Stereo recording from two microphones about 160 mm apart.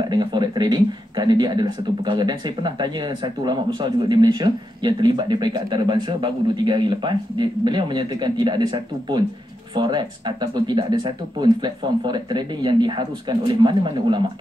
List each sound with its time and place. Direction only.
0.0 s speech: 30° right (ahead or behind)